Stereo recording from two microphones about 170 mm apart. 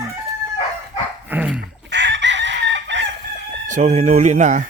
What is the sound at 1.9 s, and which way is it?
Chicken, 90° right.